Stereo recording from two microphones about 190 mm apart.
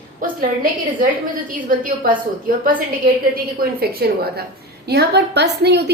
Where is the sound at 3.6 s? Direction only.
55° right (ahead or behind).